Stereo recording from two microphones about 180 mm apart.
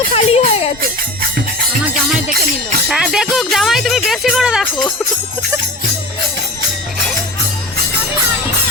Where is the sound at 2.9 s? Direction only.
5° right (ahead or behind).